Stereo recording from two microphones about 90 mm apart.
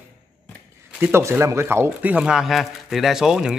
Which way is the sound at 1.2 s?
30° right (ahead or behind).